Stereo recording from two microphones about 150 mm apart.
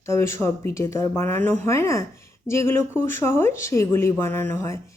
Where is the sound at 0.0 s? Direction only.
20° left (ahead or behind).